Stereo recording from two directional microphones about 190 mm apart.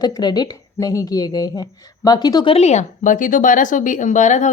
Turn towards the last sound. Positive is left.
turn(degrees=40)  # may be behind; listen again after turning